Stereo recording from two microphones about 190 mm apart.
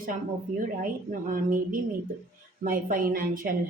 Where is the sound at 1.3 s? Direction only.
45° right (ahead or behind).